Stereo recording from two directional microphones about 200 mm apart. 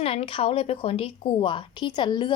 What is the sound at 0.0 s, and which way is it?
A woman's voice, 30° left (ahead or behind).